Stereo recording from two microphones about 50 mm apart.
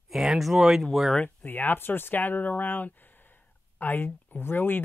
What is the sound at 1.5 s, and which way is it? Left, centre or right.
Speech, left.